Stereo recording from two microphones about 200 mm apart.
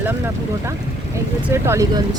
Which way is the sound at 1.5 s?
15° right (ahead or behind).